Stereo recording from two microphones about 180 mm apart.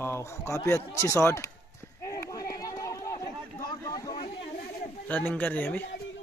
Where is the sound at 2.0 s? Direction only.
15° left (ahead or behind).